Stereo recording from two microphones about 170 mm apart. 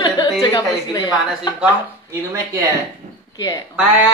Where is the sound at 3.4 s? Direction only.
20° left (ahead or behind).